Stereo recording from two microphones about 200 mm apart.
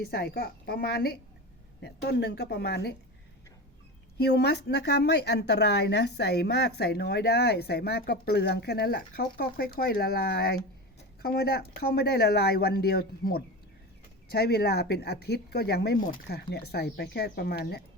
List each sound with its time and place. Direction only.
0.1 s speech: 50° left (ahead or behind)
4.2 s speech: 55° left (ahead or behind)